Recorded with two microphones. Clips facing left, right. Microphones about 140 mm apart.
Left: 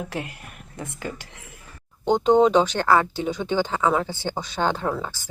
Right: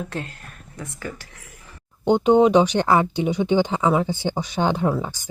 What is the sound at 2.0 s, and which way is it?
Speech, 10° right (ahead or behind).